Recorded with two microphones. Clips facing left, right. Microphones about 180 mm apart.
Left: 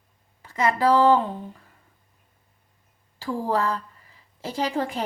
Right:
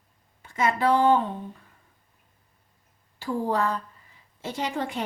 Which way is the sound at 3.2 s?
35° left (ahead or behind).